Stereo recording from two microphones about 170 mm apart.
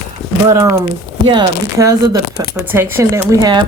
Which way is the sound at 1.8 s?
20° right (ahead or behind).